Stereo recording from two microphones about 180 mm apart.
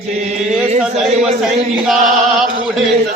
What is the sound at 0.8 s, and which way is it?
Speech, 5° right (ahead or behind).